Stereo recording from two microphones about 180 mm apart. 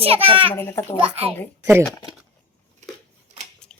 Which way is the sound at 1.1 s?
35° right (ahead or behind).